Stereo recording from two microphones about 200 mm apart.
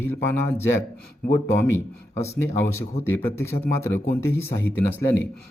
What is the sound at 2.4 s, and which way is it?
A man's voice, 10° left (ahead or behind).